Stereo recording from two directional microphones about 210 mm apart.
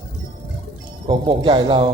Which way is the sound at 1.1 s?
25° right (ahead or behind).